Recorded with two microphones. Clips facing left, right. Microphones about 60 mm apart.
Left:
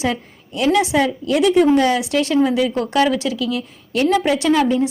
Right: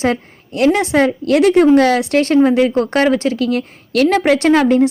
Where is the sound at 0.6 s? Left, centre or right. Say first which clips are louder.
Right 3 dB; right.